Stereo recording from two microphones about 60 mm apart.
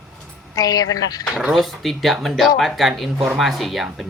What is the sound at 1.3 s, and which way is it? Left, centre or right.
Speech, centre.